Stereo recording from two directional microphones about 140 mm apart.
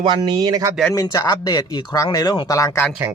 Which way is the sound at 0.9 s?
25° left (ahead or behind).